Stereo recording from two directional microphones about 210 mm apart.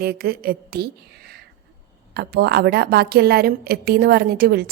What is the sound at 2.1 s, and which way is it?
A woman's voice, 50° right (ahead or behind).